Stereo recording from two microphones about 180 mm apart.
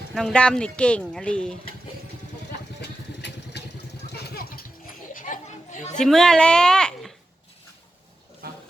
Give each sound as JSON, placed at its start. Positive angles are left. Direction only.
{"t": 0.1, "sound": "speech", "side_deg": 0}
{"t": 3.2, "sound": "vehicle", "side_deg": 70}
{"t": 5.1, "sound": "children playing", "side_deg": 45}
{"t": 6.0, "sound": "speech", "side_deg": 5}